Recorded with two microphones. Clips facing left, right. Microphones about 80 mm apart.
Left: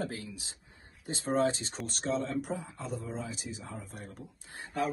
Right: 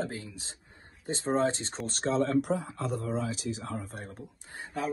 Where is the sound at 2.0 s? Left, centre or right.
Right.